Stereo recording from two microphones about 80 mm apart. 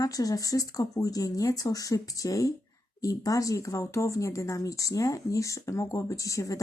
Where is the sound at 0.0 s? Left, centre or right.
Left.